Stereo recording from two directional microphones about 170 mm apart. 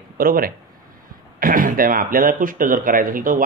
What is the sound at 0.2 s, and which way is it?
Speech, 60° right (ahead or behind).